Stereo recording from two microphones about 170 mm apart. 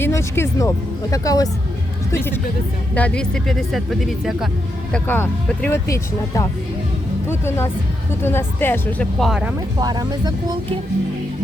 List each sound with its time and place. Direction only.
0.0 s speech: 15° left (ahead or behind)
2.9 s speech: 10° left (ahead or behind)
4.9 s speech: 10° left (ahead or behind)
9.7 s speech: 25° right (ahead or behind)